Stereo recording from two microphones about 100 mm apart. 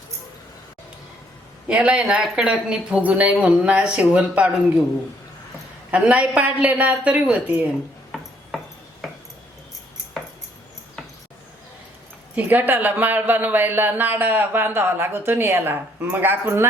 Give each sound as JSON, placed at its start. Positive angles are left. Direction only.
{"t": 1.6, "sound": "speech", "side_deg": -15}
{"t": 5.9, "sound": "speech", "side_deg": -10}
{"t": 8.1, "sound": "a sound", "side_deg": 0}
{"t": 12.4, "sound": "speech", "side_deg": -20}